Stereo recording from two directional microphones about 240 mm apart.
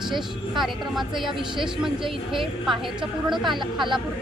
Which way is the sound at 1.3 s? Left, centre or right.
Centre.